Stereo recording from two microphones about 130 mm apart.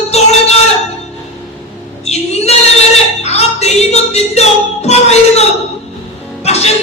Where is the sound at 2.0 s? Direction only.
55° left (ahead or behind).